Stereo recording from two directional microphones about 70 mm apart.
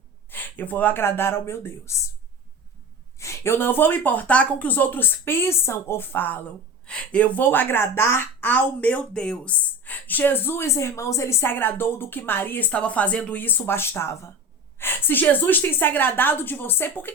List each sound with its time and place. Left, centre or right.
0.3 s speech: left
3.2 s speech: left
6.8 s speech: centre
9.1 s speech: centre
13.4 s speech: left